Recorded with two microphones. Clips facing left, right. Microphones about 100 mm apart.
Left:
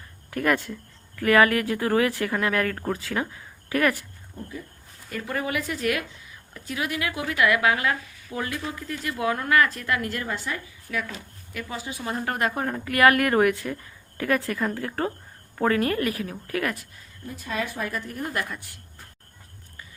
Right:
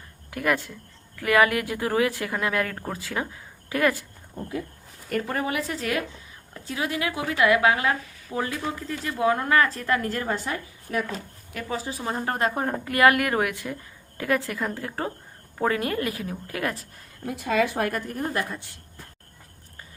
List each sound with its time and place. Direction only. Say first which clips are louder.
0.3 s speech: left 1 dB; 5° right (ahead or behind)
1.2 s speech: left 2 dB; 15° right (ahead or behind)
2.7 s speech: left 4 dB; 5° right (ahead or behind)
3.7 s speech: even; 20° right (ahead or behind)
5.2 s a woman's voice: left 3 dB; 35° right (ahead or behind)
13.1 s a woman's voice: left 4 dB; 5° right (ahead or behind)
13.5 s a woman's voice: left 5 dB; 15° right (ahead or behind)
17.2 s a woman's voice: right 7 dB; 80° right
17.9 s a woman's voice: right 2 dB; 45° right (ahead or behind)
18.3 s a woman's voice: right 2 dB; 30° right (ahead or behind)